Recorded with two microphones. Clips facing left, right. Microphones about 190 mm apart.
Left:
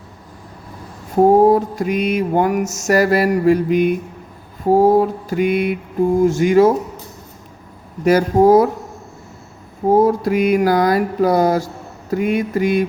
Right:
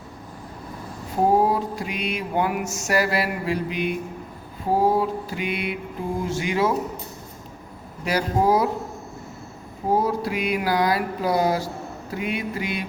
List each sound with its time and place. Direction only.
1.5 s mantra: 45° left (ahead or behind)
8.0 s mantra: 45° left (ahead or behind)
10.0 s mantra: 45° left (ahead or behind)